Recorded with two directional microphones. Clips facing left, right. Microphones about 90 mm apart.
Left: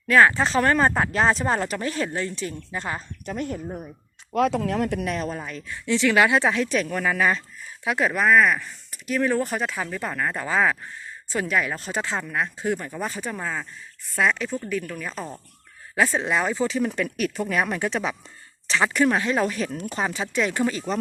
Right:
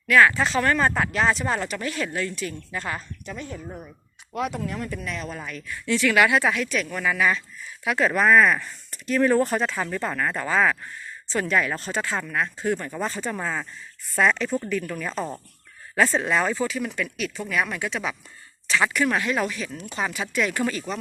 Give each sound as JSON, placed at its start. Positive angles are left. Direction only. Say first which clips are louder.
{"t": 0.1, "sound": "speech", "louder": "left 1 dB", "side_deg": 30}
{"t": 3.2, "sound": "speech", "louder": "left 7 dB", "side_deg": 55}
{"t": 4.4, "sound": "speech", "louder": "left 6 dB", "side_deg": 90}
{"t": 5.0, "sound": "speech", "louder": "left 5 dB", "side_deg": 45}
{"t": 5.5, "sound": "speech", "louder": "left 1 dB", "side_deg": 25}
{"t": 7.9, "sound": "speech", "louder": "right 1 dB", "side_deg": 15}
{"t": 8.1, "sound": "speech", "louder": "right 1 dB", "side_deg": 0}
{"t": 11.9, "sound": "speech", "louder": "even", "side_deg": 20}
{"t": 16.0, "sound": "speech", "louder": "right 1 dB", "side_deg": 10}
{"t": 16.6, "sound": "speech", "louder": "left 4 dB", "side_deg": 30}
{"t": 19.5, "sound": "speech", "louder": "left 5 dB", "side_deg": 40}
{"t": 20.1, "sound": "speech", "louder": "even", "side_deg": 25}